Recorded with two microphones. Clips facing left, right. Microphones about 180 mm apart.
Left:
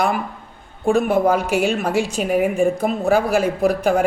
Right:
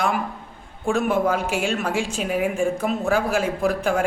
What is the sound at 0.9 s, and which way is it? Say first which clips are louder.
Speech: left 4 dB; 35° left (ahead or behind).